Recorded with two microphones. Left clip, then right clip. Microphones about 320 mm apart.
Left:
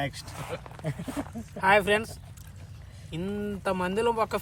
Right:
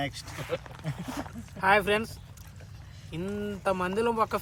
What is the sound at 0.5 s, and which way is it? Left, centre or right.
Speech, right.